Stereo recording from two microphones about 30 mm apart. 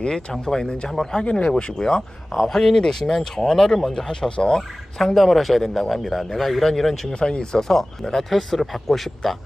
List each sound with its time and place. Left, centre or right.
0.3 s a man's voice: centre
2.3 s a man's voice: centre
2.7 s a man's voice: left
4.6 s a man's voice: centre
7.2 s speech: left
7.5 s a man's voice: centre
8.3 s speech: centre